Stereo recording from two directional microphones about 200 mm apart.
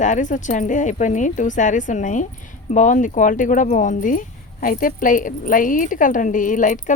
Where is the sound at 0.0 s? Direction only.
40° left (ahead or behind).